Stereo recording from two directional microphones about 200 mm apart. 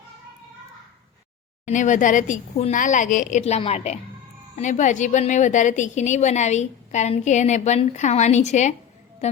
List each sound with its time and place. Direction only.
1.6 s a woman's voice: 40° left (ahead or behind)